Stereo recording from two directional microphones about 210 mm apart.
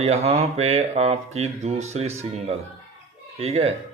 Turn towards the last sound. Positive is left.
turn(degrees=-30)  # may be behind; listen again after turning